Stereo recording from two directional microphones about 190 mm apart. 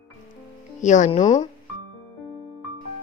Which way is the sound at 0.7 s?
40° left (ahead or behind).